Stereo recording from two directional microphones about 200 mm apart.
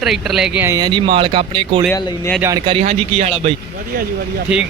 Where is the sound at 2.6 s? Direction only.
30° right (ahead or behind).